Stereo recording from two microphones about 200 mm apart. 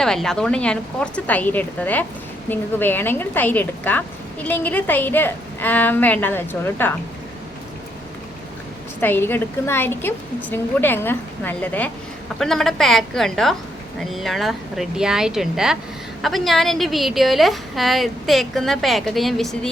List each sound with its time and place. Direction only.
0.0 s a woman's voice: centre (ahead or behind)
9.0 s a woman's voice: 10° left (ahead or behind)